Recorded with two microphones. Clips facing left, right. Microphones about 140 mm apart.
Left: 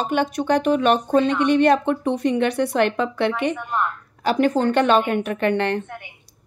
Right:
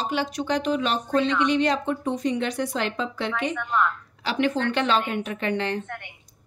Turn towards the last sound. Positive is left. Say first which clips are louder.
# left 6 dB
turn(degrees=60)  # may be behind; listen again after turning